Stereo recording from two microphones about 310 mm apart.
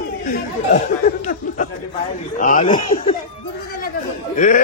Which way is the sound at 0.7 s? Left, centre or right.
Left.